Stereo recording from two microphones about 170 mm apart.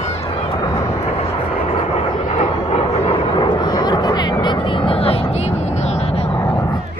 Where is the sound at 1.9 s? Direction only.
40° left (ahead or behind).